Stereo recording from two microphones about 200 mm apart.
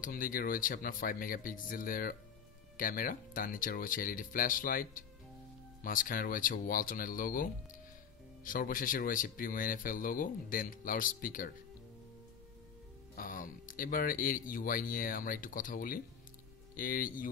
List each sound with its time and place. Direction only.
0.0 s speech: 45° left (ahead or behind)
8.5 s speech: 45° left (ahead or behind)
13.1 s speech: 45° left (ahead or behind)